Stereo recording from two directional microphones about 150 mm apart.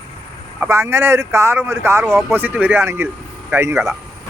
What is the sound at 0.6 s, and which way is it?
Speech, 15° right (ahead or behind).